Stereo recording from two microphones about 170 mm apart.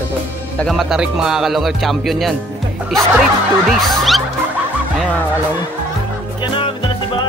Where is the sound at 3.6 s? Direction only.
Centre (ahead or behind).